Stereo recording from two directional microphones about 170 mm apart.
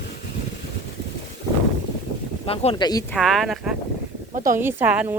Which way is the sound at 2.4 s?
35° left (ahead or behind).